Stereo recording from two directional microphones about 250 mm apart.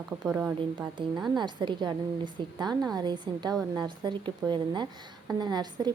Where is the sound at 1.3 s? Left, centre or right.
Centre.